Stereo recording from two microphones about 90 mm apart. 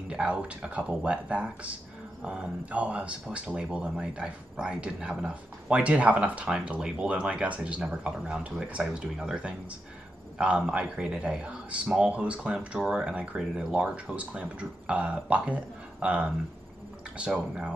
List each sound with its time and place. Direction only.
0.1 s speech: 10° right (ahead or behind)